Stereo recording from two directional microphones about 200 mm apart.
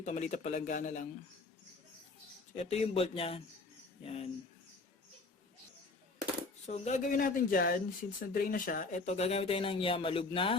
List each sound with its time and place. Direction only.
0.0 s speech: 35° left (ahead or behind)
2.6 s speech: 30° left (ahead or behind)
6.7 s speech: 35° left (ahead or behind)